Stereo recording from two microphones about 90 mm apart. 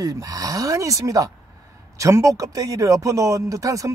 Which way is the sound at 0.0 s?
40° right (ahead or behind).